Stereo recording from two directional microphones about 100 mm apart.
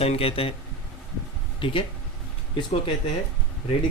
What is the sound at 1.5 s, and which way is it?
Speech, 60° left (ahead or behind).